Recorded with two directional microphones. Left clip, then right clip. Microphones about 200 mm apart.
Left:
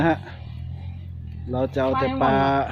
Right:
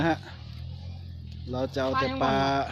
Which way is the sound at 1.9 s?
20° right (ahead or behind).